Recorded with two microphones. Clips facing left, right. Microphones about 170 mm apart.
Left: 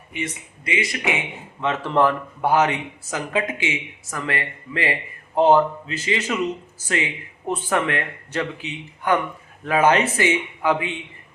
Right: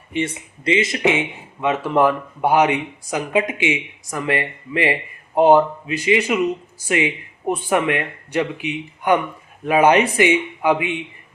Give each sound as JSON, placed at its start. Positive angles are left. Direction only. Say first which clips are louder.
{"t": 0.1, "sound": "speech", "louder": "right 7 dB", "side_deg": -30}
{"t": 1.6, "sound": "speech", "louder": "right 3 dB", "side_deg": -10}